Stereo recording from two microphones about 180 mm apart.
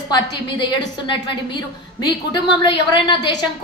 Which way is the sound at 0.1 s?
25° left (ahead or behind).